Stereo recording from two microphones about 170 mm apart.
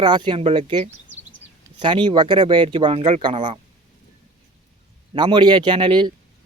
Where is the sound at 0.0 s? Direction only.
25° right (ahead or behind).